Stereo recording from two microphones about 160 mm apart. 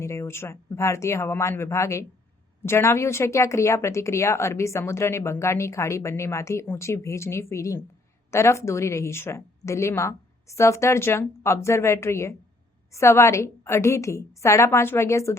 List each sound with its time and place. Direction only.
0.0 s speech: 20° left (ahead or behind)